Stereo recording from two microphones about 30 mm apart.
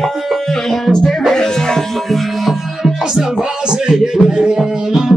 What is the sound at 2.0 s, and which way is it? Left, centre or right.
Music, centre.